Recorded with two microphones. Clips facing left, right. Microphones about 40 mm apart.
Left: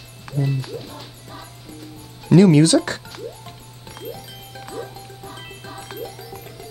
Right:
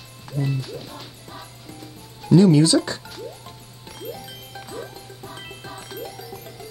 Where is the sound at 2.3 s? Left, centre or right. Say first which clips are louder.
Left 2 dB; left.